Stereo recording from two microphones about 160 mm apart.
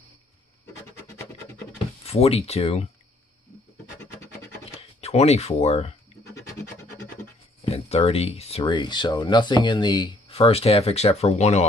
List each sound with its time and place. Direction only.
2.0 s speech: 40° left (ahead or behind)
5.0 s speech: 40° left (ahead or behind)
6.3 s scratch: 20° left (ahead or behind)
7.6 s speech: 40° left (ahead or behind)